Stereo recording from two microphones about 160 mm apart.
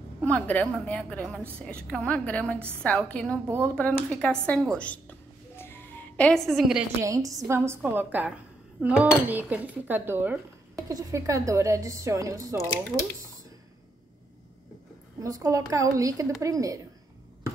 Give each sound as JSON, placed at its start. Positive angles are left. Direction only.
{"t": 0.2, "sound": "a woman's voice", "side_deg": 10}
{"t": 3.4, "sound": "dishes", "side_deg": -20}
{"t": 3.7, "sound": "a woman's voice", "side_deg": 5}
{"t": 5.6, "sound": "music", "side_deg": 10}
{"t": 7.0, "sound": "dishes", "side_deg": -20}
{"t": 10.9, "sound": "speech", "side_deg": -20}
{"t": 15.1, "sound": "speech", "side_deg": -20}